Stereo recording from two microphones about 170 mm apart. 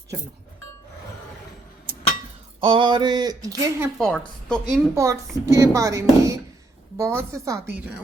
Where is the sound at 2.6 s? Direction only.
30° right (ahead or behind).